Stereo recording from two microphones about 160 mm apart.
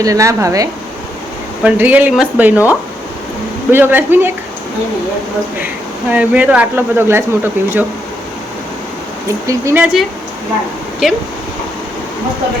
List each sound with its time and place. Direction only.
0.0 s speech: 20° right (ahead or behind)
1.6 s speech: 10° right (ahead or behind)
3.7 s speech: 15° right (ahead or behind)
6.1 s speech: 10° right (ahead or behind)
9.5 s speech: 20° right (ahead or behind)
9.8 s speech: centre (ahead or behind)